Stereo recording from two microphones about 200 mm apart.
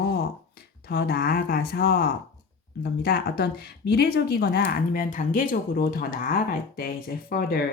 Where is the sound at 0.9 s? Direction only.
50° left (ahead or behind).